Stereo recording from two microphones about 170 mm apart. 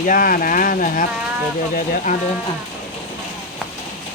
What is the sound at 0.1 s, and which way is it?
Speech, 55° left (ahead or behind).